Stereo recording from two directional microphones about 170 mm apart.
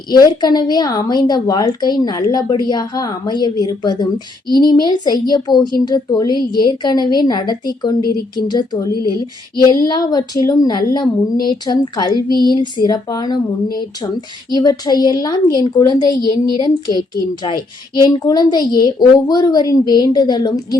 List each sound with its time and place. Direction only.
0.2 s a woman's voice: 25° left (ahead or behind)